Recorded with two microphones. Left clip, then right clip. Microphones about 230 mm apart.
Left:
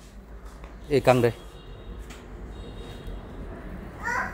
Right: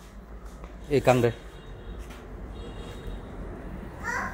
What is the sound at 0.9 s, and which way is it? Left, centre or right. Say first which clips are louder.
Speech: left 2 dB; centre.